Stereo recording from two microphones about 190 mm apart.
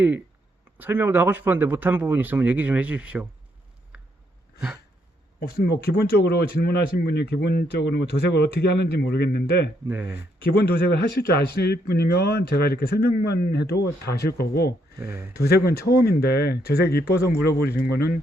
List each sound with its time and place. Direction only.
0.8 s speech: 10° right (ahead or behind)
3.9 s a sound: 5° right (ahead or behind)
5.4 s speech: 60° left (ahead or behind)
9.9 s speech: 5° right (ahead or behind)
10.5 s speech: 55° left (ahead or behind)
14.9 s speech: 15° right (ahead or behind)
15.4 s speech: 55° left (ahead or behind)